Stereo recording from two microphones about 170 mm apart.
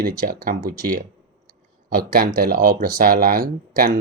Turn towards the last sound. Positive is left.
turn(degrees=-60)  # may be behind; listen again after turning